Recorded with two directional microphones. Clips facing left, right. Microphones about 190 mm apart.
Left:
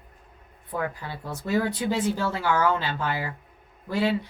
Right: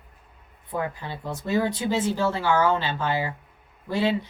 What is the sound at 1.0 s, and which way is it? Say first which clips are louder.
A woman's voice: right 2 dB; 25° right (ahead or behind).